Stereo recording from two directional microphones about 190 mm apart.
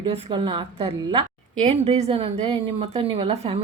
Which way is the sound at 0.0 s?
25° right (ahead or behind).